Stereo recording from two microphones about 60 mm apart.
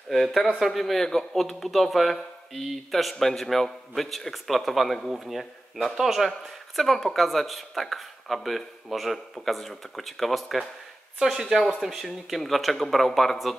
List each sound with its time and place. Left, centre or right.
0.1 s speech: centre